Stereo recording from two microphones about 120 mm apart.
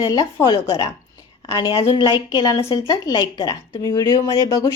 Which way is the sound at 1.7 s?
50° left (ahead or behind).